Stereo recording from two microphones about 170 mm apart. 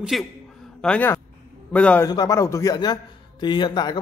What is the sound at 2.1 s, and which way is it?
A man's voice, 20° left (ahead or behind).